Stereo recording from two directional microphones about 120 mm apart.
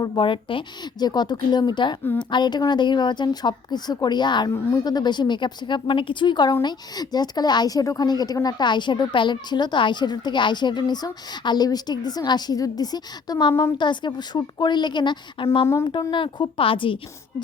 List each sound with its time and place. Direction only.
0.0 s a woman's voice: 45° left (ahead or behind)
15.6 s speech: 25° left (ahead or behind)
15.9 s a woman's voice: 45° left (ahead or behind)